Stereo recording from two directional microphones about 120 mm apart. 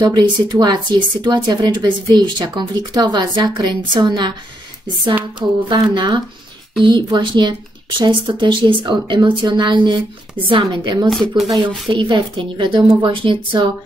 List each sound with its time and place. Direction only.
0.0 s speech: 35° right (ahead or behind)
5.4 s speech: 30° right (ahead or behind)
5.9 s speech: 40° right (ahead or behind)
11.1 s speech: centre (ahead or behind)
11.9 s speech: 40° right (ahead or behind)